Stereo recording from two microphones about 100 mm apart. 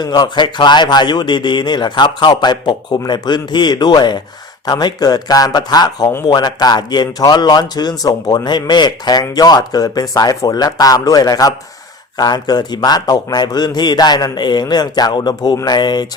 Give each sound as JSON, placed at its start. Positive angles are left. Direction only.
{"t": 0.0, "sound": "a man's voice", "side_deg": 45}